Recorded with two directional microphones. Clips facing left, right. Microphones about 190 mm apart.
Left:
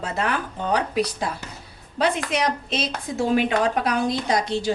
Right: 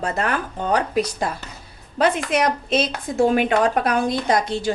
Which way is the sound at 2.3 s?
55° right (ahead or behind).